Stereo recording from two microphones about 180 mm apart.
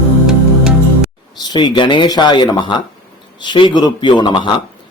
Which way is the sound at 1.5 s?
25° left (ahead or behind).